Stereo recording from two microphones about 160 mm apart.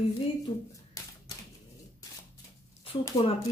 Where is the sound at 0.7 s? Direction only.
20° left (ahead or behind).